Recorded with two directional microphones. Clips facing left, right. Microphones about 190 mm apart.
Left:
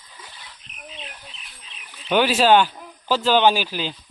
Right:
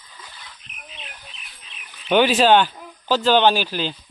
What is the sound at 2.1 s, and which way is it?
Speech, 5° left (ahead or behind).